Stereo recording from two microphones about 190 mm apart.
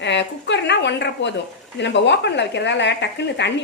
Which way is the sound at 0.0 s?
70° left (ahead or behind).